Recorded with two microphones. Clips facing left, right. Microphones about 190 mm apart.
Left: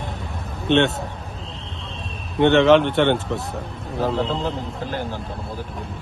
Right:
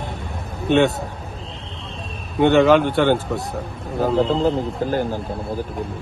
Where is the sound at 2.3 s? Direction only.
Centre (ahead or behind).